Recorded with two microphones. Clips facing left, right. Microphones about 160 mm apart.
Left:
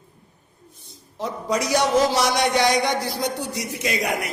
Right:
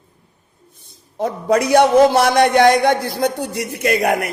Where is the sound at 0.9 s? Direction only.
55° right (ahead or behind).